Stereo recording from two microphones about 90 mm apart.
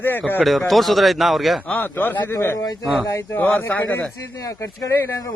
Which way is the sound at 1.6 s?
20° left (ahead or behind).